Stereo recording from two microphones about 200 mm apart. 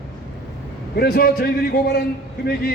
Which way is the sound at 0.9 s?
50° left (ahead or behind).